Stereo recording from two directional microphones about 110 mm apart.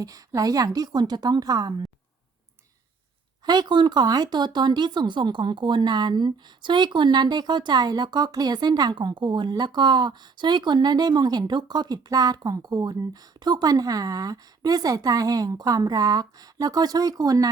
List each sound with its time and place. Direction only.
0.0 s speech: 35° right (ahead or behind)
3.4 s speech: 40° right (ahead or behind)